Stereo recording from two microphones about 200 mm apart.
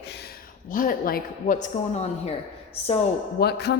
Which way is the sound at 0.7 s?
45° left (ahead or behind).